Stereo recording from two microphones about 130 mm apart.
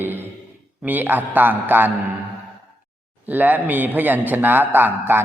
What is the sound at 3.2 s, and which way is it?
A man's voice, 15° right (ahead or behind).